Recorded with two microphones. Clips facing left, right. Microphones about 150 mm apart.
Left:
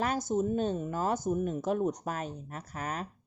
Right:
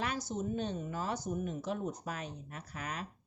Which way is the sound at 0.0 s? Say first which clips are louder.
Left 7 dB; 45° left (ahead or behind).